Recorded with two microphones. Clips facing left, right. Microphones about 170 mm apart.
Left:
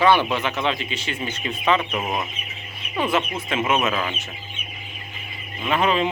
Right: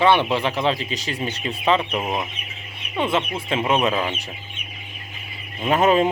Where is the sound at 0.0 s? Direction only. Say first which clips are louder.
Right 1 dB; 25° right (ahead or behind).